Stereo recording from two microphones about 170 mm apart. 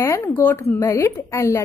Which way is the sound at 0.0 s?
15° left (ahead or behind).